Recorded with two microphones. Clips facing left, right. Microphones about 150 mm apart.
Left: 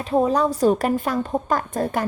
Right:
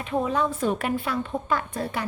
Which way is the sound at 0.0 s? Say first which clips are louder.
Left 6 dB; 35° left (ahead or behind).